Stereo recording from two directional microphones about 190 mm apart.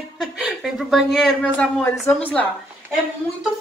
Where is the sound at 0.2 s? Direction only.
Centre (ahead or behind).